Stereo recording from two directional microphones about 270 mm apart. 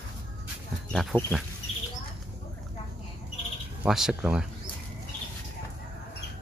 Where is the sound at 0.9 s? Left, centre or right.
Centre.